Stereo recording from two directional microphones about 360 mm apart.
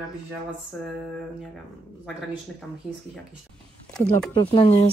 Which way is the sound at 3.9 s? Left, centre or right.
Centre.